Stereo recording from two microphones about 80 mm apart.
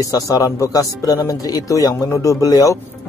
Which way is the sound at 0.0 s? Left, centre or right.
Left.